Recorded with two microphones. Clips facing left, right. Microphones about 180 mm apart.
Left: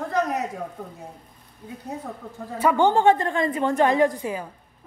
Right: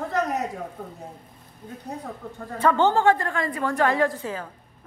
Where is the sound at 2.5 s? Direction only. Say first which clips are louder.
Left 1 dB; 10° left (ahead or behind).